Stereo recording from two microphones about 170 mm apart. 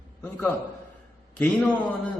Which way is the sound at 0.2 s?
10° left (ahead or behind).